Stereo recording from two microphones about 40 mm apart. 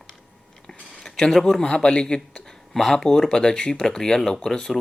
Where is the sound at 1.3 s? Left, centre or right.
Centre.